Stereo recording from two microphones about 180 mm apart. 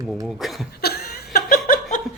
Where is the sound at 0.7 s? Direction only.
60° left (ahead or behind).